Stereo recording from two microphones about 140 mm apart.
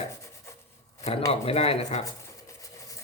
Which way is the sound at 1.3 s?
45° left (ahead or behind).